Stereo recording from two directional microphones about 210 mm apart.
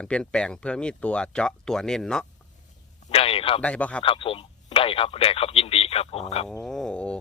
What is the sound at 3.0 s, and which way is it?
Speech, 25° left (ahead or behind).